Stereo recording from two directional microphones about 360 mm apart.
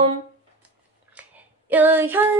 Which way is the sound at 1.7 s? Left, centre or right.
Centre.